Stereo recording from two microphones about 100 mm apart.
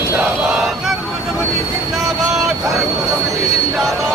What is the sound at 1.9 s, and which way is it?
Vehicle, centre (ahead or behind).